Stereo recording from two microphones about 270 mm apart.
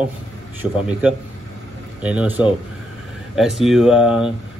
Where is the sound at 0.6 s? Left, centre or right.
Centre.